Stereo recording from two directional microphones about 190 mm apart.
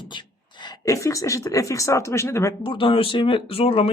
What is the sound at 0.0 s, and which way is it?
Speech, 25° left (ahead or behind).